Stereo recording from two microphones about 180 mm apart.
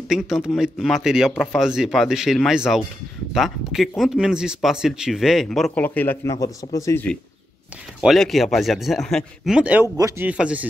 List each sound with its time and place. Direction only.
0.1 s speech: centre (ahead or behind)
5.9 s speech: 10° left (ahead or behind)
8.0 s speech: centre (ahead or behind)
9.9 s speech: 20° right (ahead or behind)
10.2 s speech: 5° right (ahead or behind)